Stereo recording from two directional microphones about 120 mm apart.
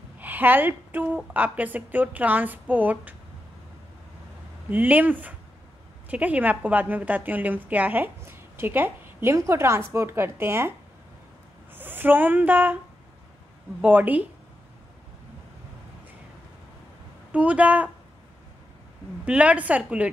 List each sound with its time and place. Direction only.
0.2 s a woman's voice: 15° right (ahead or behind)
4.6 s a woman's voice: 15° right (ahead or behind)
11.7 s speech: 15° right (ahead or behind)
13.7 s a woman's voice: 15° right (ahead or behind)
17.3 s a woman's voice: 10° right (ahead or behind)
19.2 s a woman's voice: 10° right (ahead or behind)